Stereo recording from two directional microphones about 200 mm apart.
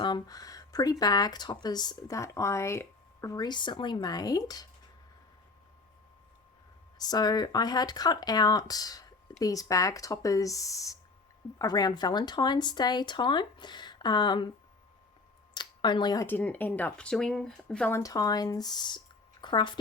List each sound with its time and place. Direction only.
0.0 s speech: 20° left (ahead or behind)
7.0 s speech: 20° left (ahead or behind)
15.5 s speech: 20° left (ahead or behind)